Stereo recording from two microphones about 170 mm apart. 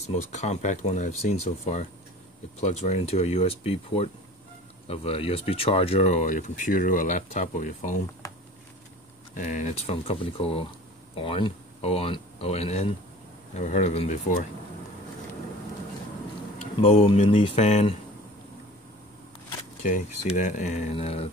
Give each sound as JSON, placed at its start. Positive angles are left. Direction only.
{"t": 0.0, "sound": "speech", "side_deg": 40}
{"t": 8.2, "sound": "a sound", "side_deg": 20}
{"t": 9.3, "sound": "speech", "side_deg": 45}
{"t": 16.8, "sound": "speech", "side_deg": 35}
{"t": 19.8, "sound": "speech", "side_deg": 45}